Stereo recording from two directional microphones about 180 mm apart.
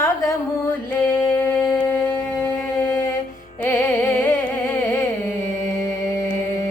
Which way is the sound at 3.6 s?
10° left (ahead or behind).